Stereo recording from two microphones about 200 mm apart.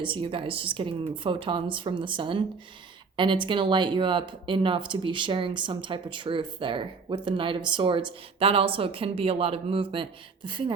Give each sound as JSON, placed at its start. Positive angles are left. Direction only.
{"t": 0.0, "sound": "speech", "side_deg": -25}